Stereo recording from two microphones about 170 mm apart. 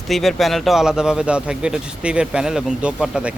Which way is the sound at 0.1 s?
Centre (ahead or behind).